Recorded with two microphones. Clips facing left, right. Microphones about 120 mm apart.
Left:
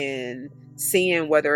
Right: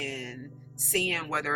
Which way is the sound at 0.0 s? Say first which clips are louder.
Left 9 dB; 65° left (ahead or behind).